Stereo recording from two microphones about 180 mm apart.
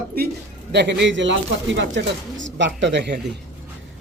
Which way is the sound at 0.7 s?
75° right (ahead or behind).